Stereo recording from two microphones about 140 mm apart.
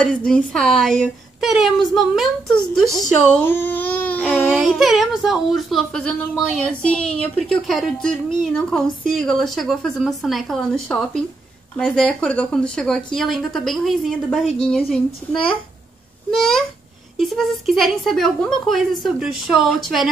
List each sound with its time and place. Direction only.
0.0 s speech: 5° left (ahead or behind)
3.3 s speech: 15° left (ahead or behind)
4.5 s a woman's voice: centre (ahead or behind)
16.3 s speech: 5° left (ahead or behind)